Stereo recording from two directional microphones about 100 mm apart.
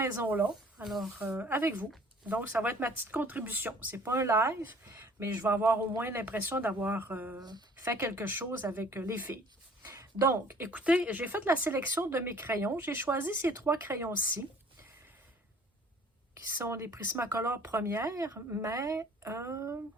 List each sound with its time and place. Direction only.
0.0 s speech: 25° right (ahead or behind)
0.9 s speech: centre (ahead or behind)
1.2 s speech: 20° right (ahead or behind)
7.3 s speech: 45° right (ahead or behind)
7.9 s speech: 25° right (ahead or behind)
16.5 s speech: 20° right (ahead or behind)